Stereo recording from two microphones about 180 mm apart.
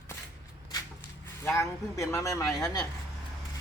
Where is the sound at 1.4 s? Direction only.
15° left (ahead or behind).